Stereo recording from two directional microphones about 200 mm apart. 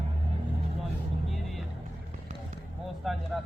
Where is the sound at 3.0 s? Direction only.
Centre (ahead or behind).